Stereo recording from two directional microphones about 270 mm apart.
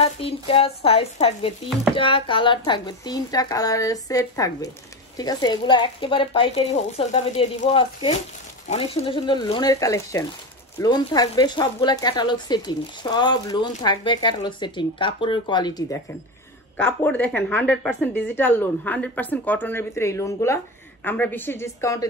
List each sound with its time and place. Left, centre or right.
0.0 s a woman's voice: left